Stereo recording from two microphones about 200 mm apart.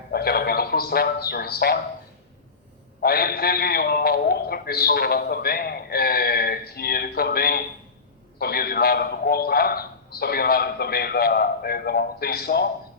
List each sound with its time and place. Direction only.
0.1 s a man's voice: 50° left (ahead or behind)
3.0 s a man's voice: 50° left (ahead or behind)